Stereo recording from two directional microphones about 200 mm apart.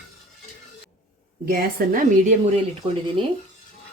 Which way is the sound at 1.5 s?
45° right (ahead or behind).